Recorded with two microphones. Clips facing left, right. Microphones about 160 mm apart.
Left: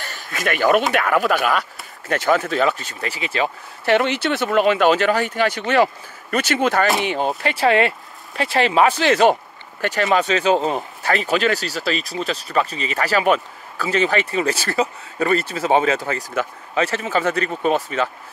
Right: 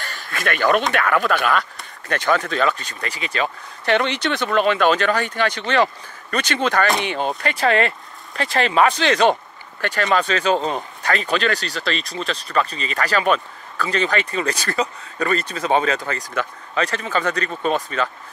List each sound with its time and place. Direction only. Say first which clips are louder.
0.0 s speech: left 1 dB; 15° left (ahead or behind)
2.2 s speech: left 1 dB; 25° left (ahead or behind)
11.2 s speech: left 2 dB; 10° left (ahead or behind)